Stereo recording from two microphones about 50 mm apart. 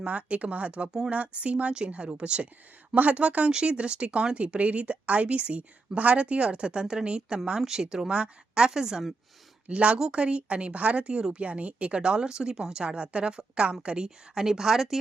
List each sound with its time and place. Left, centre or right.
0.0 s speech: right
2.9 s a woman's voice: right; by 9.1 s centre
9.6 s speech: right; by 14.9 s centre